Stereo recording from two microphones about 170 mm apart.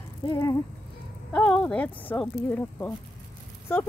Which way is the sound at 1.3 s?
5° left (ahead or behind).